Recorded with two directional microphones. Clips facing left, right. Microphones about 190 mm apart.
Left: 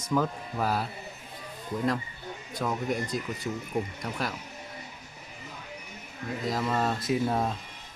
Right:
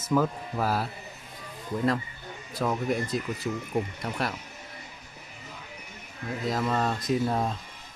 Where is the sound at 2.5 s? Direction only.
5° right (ahead or behind).